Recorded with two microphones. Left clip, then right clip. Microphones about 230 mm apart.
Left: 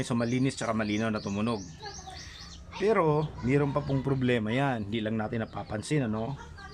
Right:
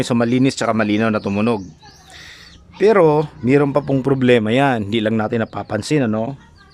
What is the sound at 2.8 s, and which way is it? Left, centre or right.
Speech, right.